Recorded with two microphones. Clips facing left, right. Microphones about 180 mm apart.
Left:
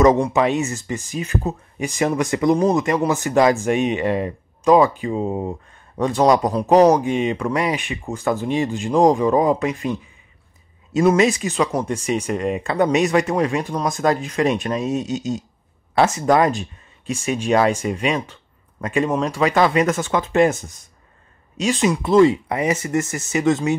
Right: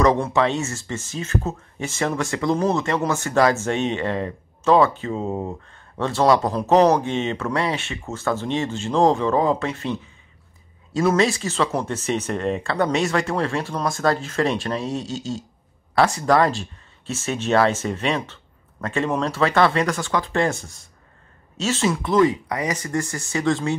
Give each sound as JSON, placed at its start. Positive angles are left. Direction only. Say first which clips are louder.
{"t": 0.0, "sound": "speech", "louder": "left 3 dB", "side_deg": 20}
{"t": 11.1, "sound": "speech", "louder": "left 3 dB", "side_deg": 20}